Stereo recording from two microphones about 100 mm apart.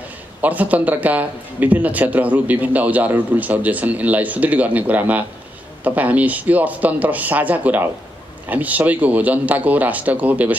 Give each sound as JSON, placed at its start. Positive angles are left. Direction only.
{"t": 0.4, "sound": "a man's voice", "side_deg": -15}